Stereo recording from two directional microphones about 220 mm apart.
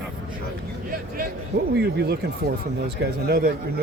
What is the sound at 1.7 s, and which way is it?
Speech, 45° right (ahead or behind).